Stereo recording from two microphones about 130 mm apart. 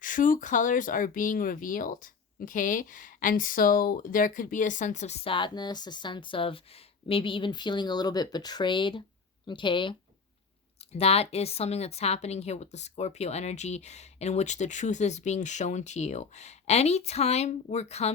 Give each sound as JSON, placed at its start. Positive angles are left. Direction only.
{"t": 0.0, "sound": "a woman's voice", "side_deg": 90}
{"t": 10.9, "sound": "a woman's voice", "side_deg": 50}